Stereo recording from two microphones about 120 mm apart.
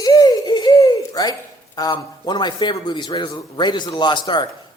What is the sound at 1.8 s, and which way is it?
A man's voice, 35° left (ahead or behind).